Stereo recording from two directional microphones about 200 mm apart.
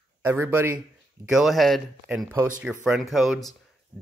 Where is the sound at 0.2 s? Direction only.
10° right (ahead or behind).